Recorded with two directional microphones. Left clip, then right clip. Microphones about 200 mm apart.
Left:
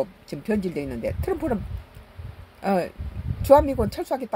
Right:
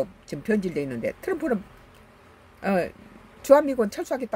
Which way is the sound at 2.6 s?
15° right (ahead or behind).